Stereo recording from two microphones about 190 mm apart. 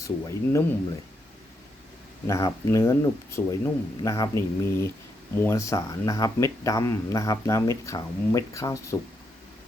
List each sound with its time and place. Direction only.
0.0 s speech: 15° left (ahead or behind)
2.2 s speech: 15° left (ahead or behind)